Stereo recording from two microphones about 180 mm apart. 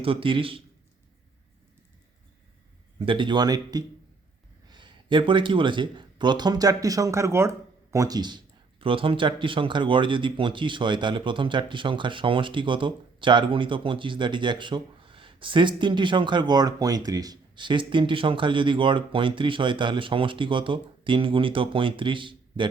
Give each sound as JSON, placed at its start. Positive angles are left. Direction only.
{"t": 0.0, "sound": "speech", "side_deg": -30}
{"t": 3.1, "sound": "speech", "side_deg": -25}